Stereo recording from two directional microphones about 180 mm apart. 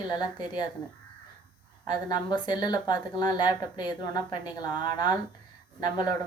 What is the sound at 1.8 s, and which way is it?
A woman's voice, 25° left (ahead or behind).